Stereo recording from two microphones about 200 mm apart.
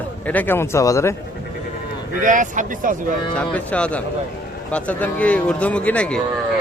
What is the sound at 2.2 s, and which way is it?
Speech, 40° right (ahead or behind).